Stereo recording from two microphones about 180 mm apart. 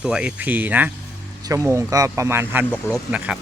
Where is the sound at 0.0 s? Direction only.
5° right (ahead or behind).